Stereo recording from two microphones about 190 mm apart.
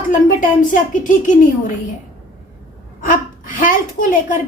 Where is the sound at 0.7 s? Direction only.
40° left (ahead or behind).